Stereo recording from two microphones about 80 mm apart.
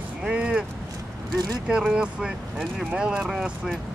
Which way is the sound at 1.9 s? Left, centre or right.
Centre.